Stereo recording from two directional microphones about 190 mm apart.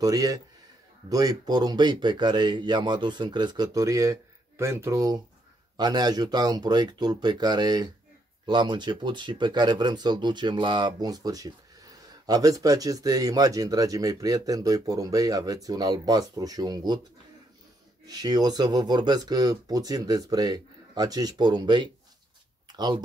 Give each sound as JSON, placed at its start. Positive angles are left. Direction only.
{"t": 0.0, "sound": "speech", "side_deg": -20}
{"t": 18.0, "sound": "speech", "side_deg": -20}